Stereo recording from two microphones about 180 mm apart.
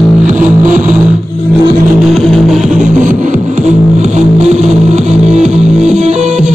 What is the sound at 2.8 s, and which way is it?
Music, 45° right (ahead or behind).